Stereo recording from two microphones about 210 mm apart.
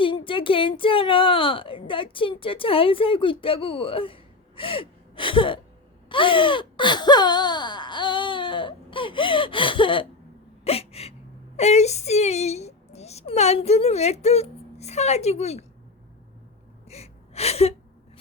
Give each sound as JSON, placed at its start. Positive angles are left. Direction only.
{"t": 0.0, "sound": "speech", "side_deg": 25}
{"t": 10.6, "sound": "hiccup", "side_deg": 30}
{"t": 11.5, "sound": "speech", "side_deg": 30}
{"t": 16.9, "sound": "gasp", "side_deg": 30}